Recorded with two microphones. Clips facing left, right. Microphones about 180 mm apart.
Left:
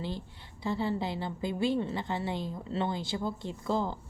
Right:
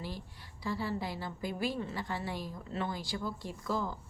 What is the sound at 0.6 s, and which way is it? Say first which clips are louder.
A woman's voice: left 4 dB; 25° left (ahead or behind).